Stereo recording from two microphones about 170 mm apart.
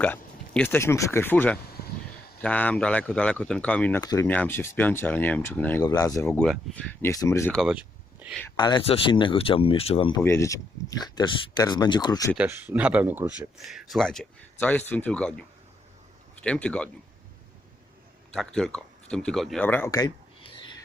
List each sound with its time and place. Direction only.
0.0 s speech: 10° left (ahead or behind)
4.0 s speech: 20° left (ahead or behind)
6.4 s speech: 5° left (ahead or behind)
7.1 s speech: 20° left (ahead or behind)
7.5 s speech: 5° right (ahead or behind)
8.5 s speech: 25° left (ahead or behind)
10.2 s speech: 15° left (ahead or behind)
12.4 s speech: 10° right (ahead or behind)
13.6 s speech: centre (ahead or behind)
18.3 s speech: 5° left (ahead or behind); by 20.1 s 20° left (ahead or behind)